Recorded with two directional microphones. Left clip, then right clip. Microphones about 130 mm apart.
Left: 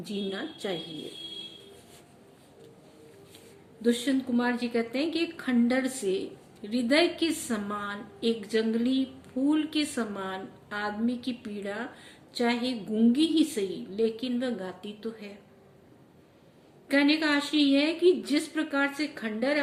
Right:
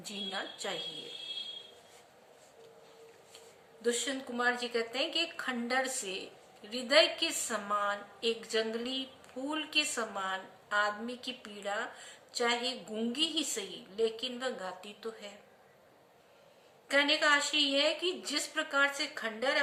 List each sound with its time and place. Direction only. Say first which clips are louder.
0.0 s a woman's voice: left 4 dB; 20° right (ahead or behind)
3.8 s a woman's voice: left 6 dB; 15° right (ahead or behind)
16.9 s a woman's voice: left 2 dB; 15° right (ahead or behind)